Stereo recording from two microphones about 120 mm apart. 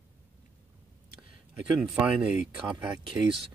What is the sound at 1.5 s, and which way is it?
Speech, 10° right (ahead or behind).